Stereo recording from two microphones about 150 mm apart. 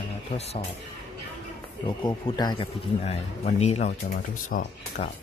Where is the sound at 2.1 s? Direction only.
30° left (ahead or behind); by 3.9 s 45° left (ahead or behind).